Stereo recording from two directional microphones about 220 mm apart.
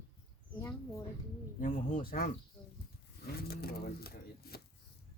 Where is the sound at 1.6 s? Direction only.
35° left (ahead or behind).